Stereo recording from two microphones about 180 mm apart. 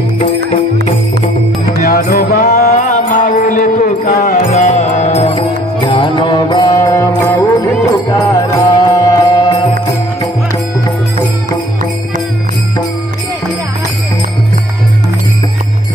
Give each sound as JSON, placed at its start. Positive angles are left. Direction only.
{"t": 1.8, "sound": "music", "side_deg": 55}
{"t": 5.3, "sound": "music", "side_deg": 25}